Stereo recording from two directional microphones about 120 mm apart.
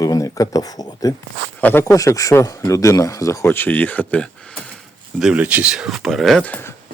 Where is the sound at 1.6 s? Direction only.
15° left (ahead or behind).